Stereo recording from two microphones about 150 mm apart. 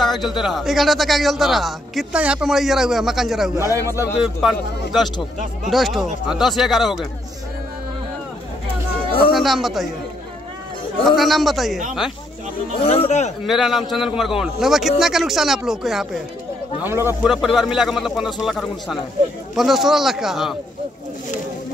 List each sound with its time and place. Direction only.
0.0 s a man's voice: centre (ahead or behind)
3.7 s speech: 20° right (ahead or behind)
4.2 s a man's voice: centre (ahead or behind)
9.3 s a man's voice: centre (ahead or behind)
11.1 s a man's voice: centre (ahead or behind)
12.7 s speech: 40° left (ahead or behind)
13.5 s a man's voice: centre (ahead or behind)
16.8 s speech: 15° right (ahead or behind)
17.3 s a man's voice: centre (ahead or behind)